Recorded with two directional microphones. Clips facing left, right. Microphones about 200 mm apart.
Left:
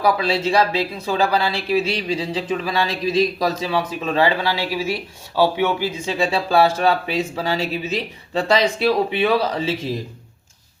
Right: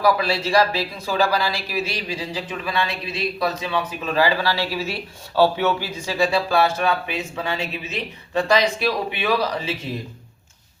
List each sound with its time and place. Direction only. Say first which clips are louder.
0.2 s speech: left 1 dB; 25° left (ahead or behind)